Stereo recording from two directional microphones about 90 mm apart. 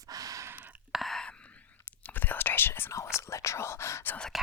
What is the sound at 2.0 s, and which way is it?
Whispering, 20° left (ahead or behind).